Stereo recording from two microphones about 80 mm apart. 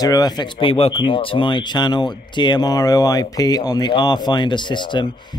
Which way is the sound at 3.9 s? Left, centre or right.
Left.